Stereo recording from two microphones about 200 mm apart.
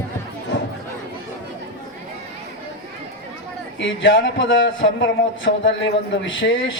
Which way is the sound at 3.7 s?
70° left (ahead or behind).